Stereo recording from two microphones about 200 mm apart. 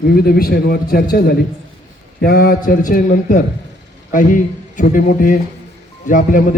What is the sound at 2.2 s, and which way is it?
A man's voice, 50° left (ahead or behind).